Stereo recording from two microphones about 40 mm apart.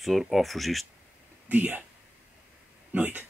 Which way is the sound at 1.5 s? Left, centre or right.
Right.